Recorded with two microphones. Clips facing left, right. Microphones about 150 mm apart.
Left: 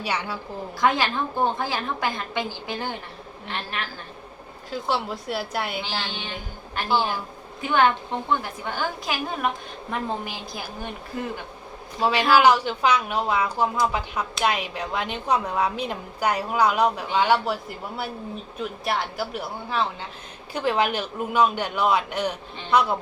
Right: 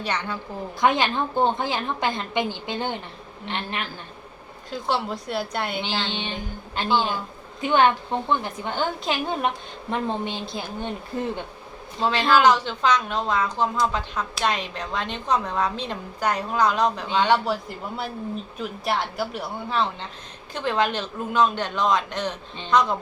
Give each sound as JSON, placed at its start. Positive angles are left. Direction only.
{"t": 0.0, "sound": "a woman's voice", "side_deg": 5}
{"t": 0.8, "sound": "a woman's voice", "side_deg": -20}
{"t": 4.7, "sound": "speech", "side_deg": 0}
{"t": 5.8, "sound": "a woman's voice", "side_deg": -20}
{"t": 11.9, "sound": "a woman's voice", "side_deg": 10}